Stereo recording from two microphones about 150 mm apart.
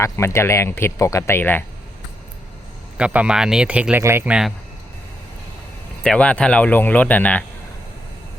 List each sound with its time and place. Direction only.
0.0 s speech: 15° left (ahead or behind)
3.0 s speech: 10° right (ahead or behind)
6.0 s speech: 5° left (ahead or behind)